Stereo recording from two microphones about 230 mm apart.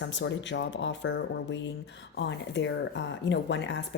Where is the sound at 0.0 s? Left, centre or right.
Left.